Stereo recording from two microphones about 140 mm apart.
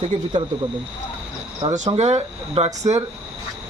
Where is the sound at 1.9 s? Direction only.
50° right (ahead or behind).